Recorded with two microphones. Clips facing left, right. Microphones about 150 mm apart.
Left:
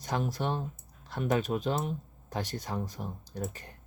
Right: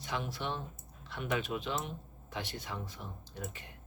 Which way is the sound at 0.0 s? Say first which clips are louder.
Left 6 dB; 40° left (ahead or behind).